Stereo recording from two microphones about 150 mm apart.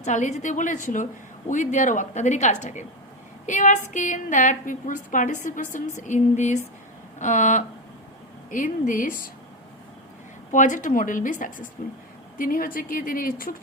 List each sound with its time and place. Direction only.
0.0 s a woman's voice: 55° left (ahead or behind)
6.0 s a sound: 55° left (ahead or behind)
7.2 s a woman's voice: 55° left (ahead or behind)
10.5 s a woman's voice: 55° left (ahead or behind)